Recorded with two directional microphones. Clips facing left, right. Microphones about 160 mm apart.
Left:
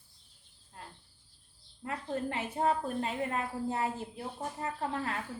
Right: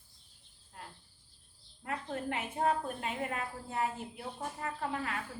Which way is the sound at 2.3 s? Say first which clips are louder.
Even; 30° left (ahead or behind).